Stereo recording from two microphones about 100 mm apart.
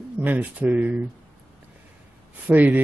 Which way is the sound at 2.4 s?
15° right (ahead or behind).